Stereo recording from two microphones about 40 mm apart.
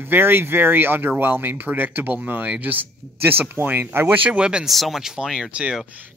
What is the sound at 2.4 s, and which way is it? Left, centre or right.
Speech, right.